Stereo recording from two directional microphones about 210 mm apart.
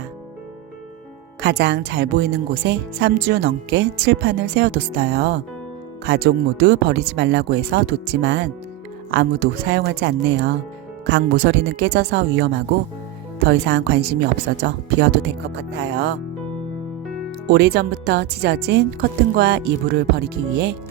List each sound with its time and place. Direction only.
1.4 s speech: 55° right (ahead or behind)
15.8 s speech: 55° right (ahead or behind)
17.5 s speech: 50° right (ahead or behind)